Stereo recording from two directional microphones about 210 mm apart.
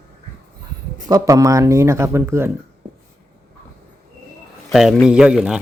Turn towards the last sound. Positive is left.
turn(degrees=-5)  # may be behind; listen again after turning